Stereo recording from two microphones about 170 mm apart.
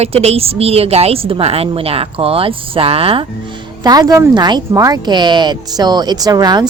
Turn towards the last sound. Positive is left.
turn(degrees=-25)  # may be behind; listen again after turning